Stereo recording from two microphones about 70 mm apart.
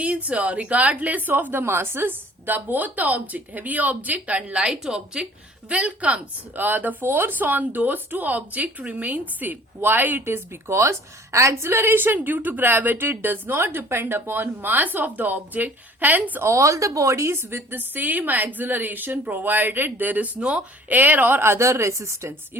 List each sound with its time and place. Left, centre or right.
0.0 s speech: centre
16.4 s speech: right; by 20.7 s centre
20.9 s a woman's voice: right